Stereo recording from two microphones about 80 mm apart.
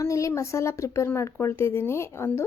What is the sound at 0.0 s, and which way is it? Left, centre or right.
Speech, left.